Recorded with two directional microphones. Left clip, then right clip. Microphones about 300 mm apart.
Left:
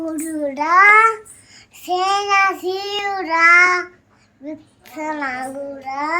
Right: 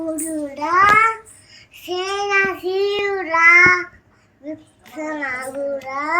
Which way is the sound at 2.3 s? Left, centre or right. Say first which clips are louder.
Left 2 dB; centre.